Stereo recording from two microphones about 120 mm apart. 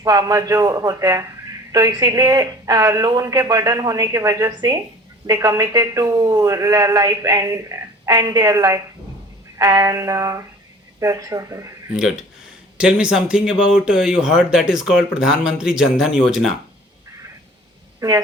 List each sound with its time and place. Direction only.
0.0 s a man's voice: 30° right (ahead or behind)
11.9 s speech: 5° right (ahead or behind)
18.0 s speech: 35° right (ahead or behind)